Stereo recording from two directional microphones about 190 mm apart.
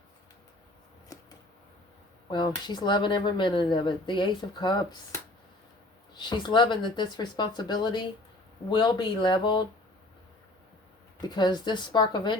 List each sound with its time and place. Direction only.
1.1 s a sound: 20° left (ahead or behind)
2.3 s speech: 25° left (ahead or behind)
6.1 s speech: 25° left (ahead or behind)
11.3 s speech: 20° left (ahead or behind)